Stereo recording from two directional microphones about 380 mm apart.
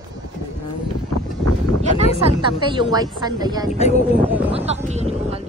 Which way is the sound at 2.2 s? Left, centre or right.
Centre.